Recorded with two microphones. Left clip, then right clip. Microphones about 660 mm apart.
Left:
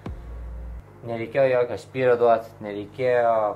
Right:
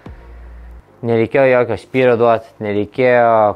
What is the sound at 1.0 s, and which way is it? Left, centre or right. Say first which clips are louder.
Speech: right 9 dB; right.